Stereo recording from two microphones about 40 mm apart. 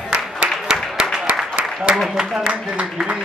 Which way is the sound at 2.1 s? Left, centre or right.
Centre.